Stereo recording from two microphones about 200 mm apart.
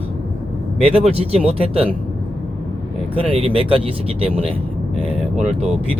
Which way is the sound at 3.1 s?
30° right (ahead or behind).